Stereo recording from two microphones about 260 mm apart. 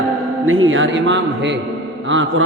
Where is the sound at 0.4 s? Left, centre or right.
Right.